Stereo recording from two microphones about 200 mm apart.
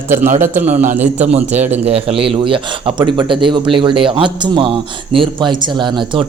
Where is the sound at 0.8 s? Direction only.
35° right (ahead or behind).